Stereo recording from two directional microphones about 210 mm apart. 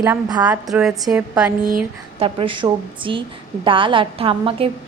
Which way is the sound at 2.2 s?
25° right (ahead or behind).